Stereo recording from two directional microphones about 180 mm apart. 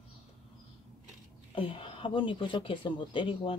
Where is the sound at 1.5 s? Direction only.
30° left (ahead or behind).